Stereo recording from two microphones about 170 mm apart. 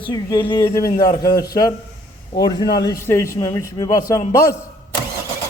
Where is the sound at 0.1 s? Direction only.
25° left (ahead or behind).